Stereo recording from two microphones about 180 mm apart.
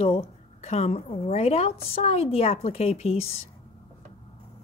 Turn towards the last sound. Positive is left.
turn(degrees=35)  # may be behind; listen again after turning